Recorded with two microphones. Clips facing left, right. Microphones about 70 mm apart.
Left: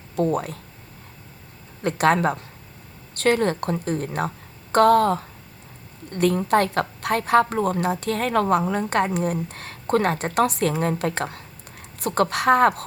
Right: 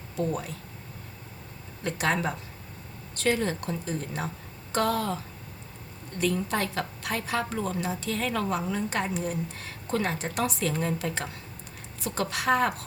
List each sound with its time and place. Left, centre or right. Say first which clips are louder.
0.2 s a woman's voice: left 7 dB; left
1.8 s a woman's voice: left 8 dB; left